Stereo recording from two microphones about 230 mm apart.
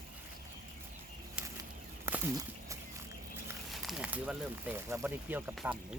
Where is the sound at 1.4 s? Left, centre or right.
Centre.